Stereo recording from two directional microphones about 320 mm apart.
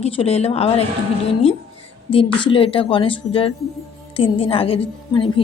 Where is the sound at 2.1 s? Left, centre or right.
Centre.